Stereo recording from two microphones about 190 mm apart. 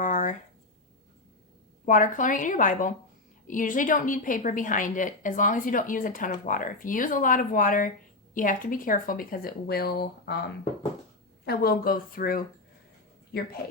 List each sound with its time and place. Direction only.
0.0 s a sound: 45° left (ahead or behind)
1.8 s a woman's voice: 45° left (ahead or behind)
11.4 s a woman's voice: 55° left (ahead or behind)